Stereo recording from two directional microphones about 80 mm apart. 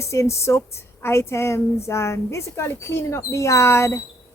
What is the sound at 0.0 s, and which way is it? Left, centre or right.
A woman's voice, left.